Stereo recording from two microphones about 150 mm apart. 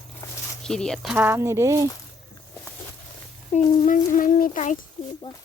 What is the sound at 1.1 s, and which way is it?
Speech, 15° right (ahead or behind).